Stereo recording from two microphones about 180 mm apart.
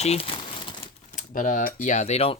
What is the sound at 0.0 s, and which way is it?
Speech, 35° left (ahead or behind).